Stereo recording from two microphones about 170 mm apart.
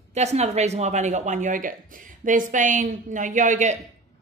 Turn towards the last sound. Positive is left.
turn(degrees=-45)  # may be behind; listen again after turning